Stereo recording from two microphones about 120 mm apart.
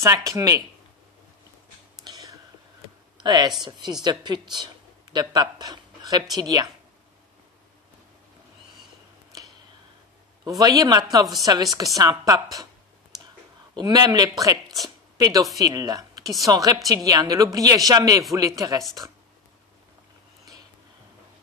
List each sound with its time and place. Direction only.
0.0 s speech: 25° right (ahead or behind)
2.0 s whispering: 35° right (ahead or behind)
3.2 s speech: 35° right (ahead or behind)
10.4 s speech: 30° right (ahead or behind)
13.7 s speech: 35° right (ahead or behind)